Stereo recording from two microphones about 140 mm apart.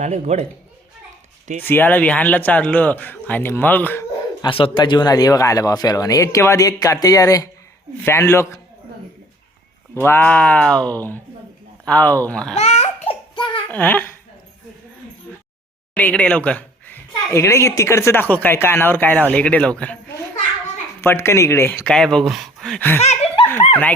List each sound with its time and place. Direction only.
0.0 s speech: 55° right (ahead or behind)
1.6 s a woman's voice: 15° left (ahead or behind)
4.4 s speech: 40° left (ahead or behind); by 8.5 s 20° left (ahead or behind)
9.9 s a woman's voice: 15° left (ahead or behind)
12.5 s laughter: 55° left (ahead or behind)
13.1 s a sound: 35° left (ahead or behind)
13.7 s a child's voice: 10° left (ahead or behind)
16.0 s a woman's voice: 10° left (ahead or behind)
21.0 s speech: 20° left (ahead or behind)
21.8 s speech: 5° left (ahead or behind)
23.0 s laughter: 50° left (ahead or behind)